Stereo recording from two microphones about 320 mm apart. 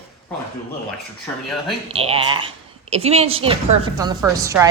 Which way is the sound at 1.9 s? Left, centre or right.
Centre.